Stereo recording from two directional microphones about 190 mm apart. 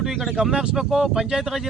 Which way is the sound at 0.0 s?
Centre (ahead or behind).